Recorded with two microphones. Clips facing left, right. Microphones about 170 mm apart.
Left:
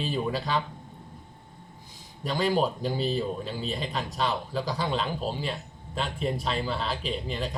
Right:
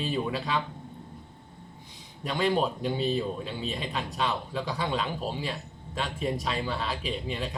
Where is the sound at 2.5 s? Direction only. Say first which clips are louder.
Left 1 dB; centre (ahead or behind).